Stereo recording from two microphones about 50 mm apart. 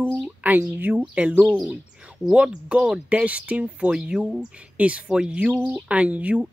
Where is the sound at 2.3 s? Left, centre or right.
Centre.